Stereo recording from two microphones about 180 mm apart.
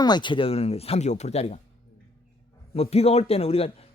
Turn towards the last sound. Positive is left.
turn(degrees=35)  # may be behind; listen again after turning